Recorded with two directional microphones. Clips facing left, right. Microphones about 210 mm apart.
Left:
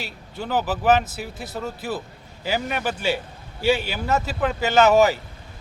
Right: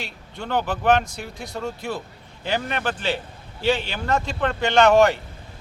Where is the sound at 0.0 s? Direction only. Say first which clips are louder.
Left 1 dB; 5° left (ahead or behind).